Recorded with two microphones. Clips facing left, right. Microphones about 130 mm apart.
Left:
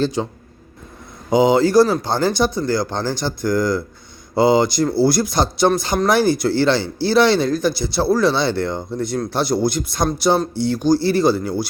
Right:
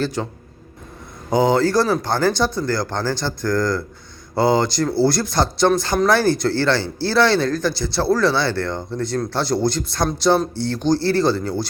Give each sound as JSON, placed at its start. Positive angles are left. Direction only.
{"t": 0.0, "sound": "speech", "side_deg": 20}
{"t": 1.3, "sound": "speech", "side_deg": 15}